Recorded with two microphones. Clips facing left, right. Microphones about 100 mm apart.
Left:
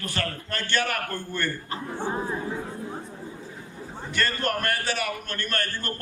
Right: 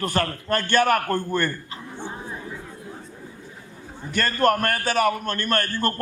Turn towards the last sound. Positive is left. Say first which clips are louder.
# right 7 dB
turn(degrees=-50)  # may be behind; listen again after turning